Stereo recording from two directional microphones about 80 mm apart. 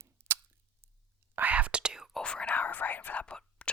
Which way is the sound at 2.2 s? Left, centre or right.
Centre.